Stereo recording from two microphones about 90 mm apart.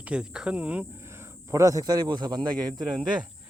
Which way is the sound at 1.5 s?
40° right (ahead or behind).